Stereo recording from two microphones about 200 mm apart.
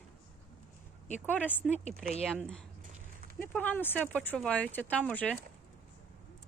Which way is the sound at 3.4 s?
10° left (ahead or behind).